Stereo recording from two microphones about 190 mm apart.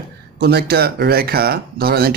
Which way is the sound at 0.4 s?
55° right (ahead or behind).